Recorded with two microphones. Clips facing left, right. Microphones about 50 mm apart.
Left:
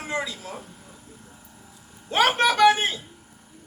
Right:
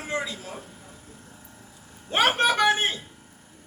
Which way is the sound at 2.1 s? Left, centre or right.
Right.